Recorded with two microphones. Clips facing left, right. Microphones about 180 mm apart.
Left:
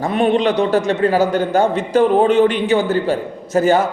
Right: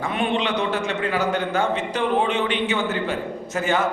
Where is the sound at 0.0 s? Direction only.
40° left (ahead or behind).